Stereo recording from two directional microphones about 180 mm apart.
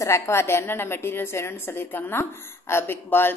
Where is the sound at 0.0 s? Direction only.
15° left (ahead or behind).